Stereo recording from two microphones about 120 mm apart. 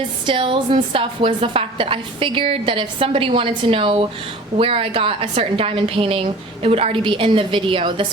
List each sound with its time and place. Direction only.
0.3 s a woman's voice: 45° right (ahead or behind)